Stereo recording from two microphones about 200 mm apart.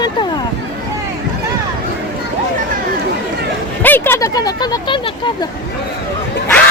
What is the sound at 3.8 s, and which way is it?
Speech, 10° left (ahead or behind).